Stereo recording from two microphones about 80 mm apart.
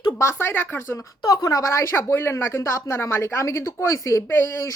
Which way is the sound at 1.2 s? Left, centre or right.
Left.